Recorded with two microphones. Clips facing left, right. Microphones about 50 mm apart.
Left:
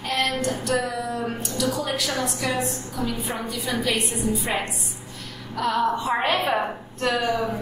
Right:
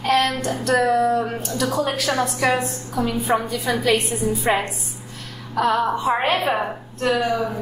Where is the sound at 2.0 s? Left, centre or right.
Right.